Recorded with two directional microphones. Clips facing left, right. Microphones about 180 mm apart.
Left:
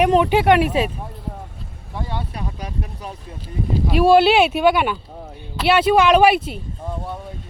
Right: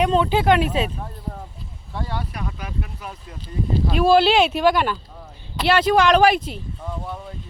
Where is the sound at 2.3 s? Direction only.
30° left (ahead or behind).